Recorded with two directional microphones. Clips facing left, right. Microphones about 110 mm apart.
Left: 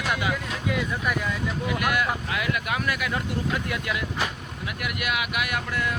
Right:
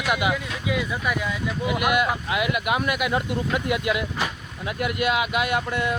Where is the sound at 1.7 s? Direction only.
20° right (ahead or behind).